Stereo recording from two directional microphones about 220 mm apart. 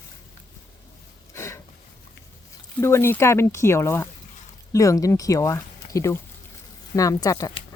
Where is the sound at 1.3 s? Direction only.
10° left (ahead or behind).